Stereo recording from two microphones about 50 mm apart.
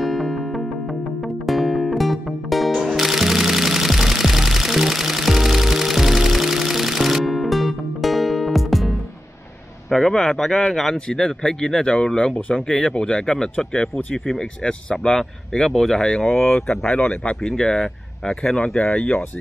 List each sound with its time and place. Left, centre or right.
0.0 s music: centre
9.8 s a man's voice: centre
14.6 s a man's voice: centre
16.9 s speech: left
17.4 s a man's voice: centre